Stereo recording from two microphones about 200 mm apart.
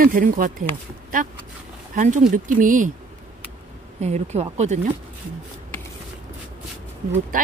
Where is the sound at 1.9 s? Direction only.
40° right (ahead or behind).